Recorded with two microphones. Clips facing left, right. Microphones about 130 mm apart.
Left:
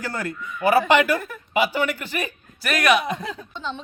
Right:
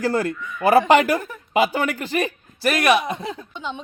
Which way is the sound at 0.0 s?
35° right (ahead or behind).